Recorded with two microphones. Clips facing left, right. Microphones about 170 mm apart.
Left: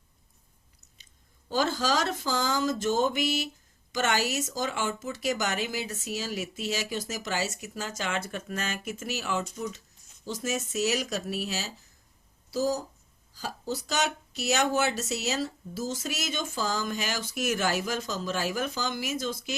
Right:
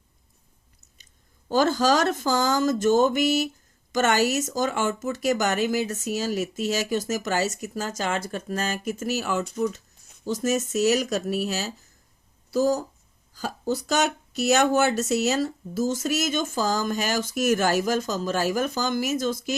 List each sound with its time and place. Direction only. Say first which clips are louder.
1.5 s speech: right 7 dB; 45° right (ahead or behind)
9.4 s speech: right 8 dB; 60° right (ahead or behind)
10.2 s speech: right 7 dB; 45° right (ahead or behind)